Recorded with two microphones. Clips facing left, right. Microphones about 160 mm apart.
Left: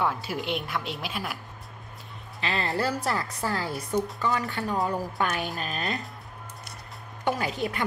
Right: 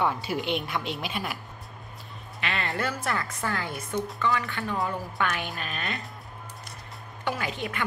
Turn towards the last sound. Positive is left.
turn(degrees=40)  # may be behind; listen again after turning